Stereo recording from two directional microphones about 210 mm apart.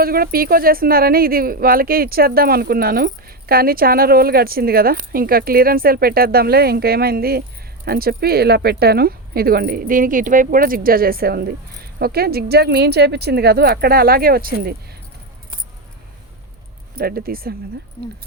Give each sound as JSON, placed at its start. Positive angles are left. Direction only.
{"t": 0.0, "sound": "speech", "side_deg": -45}
{"t": 16.9, "sound": "speech", "side_deg": -45}